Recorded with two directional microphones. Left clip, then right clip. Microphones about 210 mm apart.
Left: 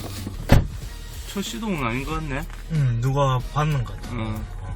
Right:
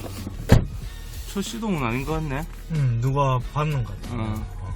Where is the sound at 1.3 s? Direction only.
20° right (ahead or behind).